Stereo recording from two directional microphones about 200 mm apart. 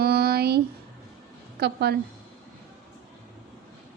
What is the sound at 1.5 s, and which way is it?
Speech, 55° right (ahead or behind).